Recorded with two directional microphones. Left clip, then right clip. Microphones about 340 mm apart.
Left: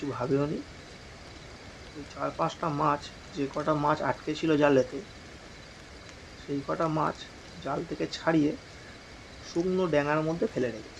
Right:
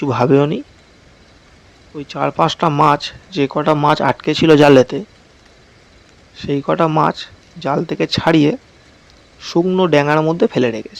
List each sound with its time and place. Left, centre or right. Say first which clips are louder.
0.1 s speech: right 16 dB; right
2.1 s speech: right 15 dB; right
6.7 s speech: right 14 dB; right